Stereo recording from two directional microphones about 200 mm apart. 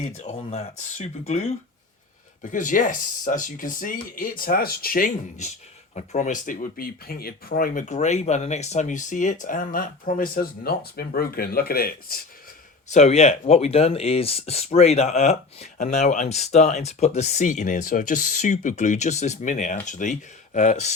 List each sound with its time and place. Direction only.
0.2 s speech: 35° left (ahead or behind)
12.9 s speech: 35° left (ahead or behind)